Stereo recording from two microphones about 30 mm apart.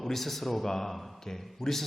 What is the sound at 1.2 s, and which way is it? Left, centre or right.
Speech, centre.